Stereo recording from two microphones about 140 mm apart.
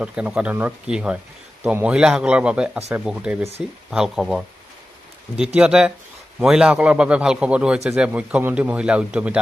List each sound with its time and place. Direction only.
0.0 s a man's voice: 10° right (ahead or behind)